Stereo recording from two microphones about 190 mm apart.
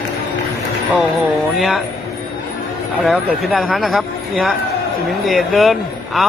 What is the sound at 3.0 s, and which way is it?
A man's voice, centre (ahead or behind).